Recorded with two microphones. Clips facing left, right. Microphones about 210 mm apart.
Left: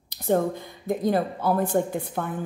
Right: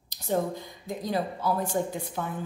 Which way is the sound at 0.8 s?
55° left (ahead or behind).